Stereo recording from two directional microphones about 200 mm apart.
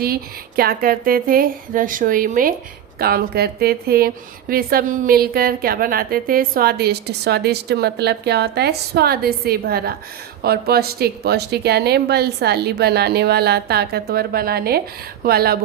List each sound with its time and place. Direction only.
0.0 s a woman's voice: 50° right (ahead or behind)